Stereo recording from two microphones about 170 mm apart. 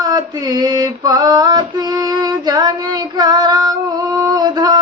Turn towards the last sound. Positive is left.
turn(degrees=-25)  # may be behind; listen again after turning